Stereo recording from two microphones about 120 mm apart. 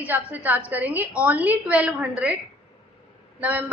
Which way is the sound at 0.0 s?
10° right (ahead or behind).